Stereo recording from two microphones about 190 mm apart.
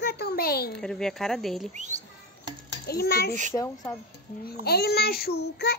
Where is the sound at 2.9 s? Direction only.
55° left (ahead or behind).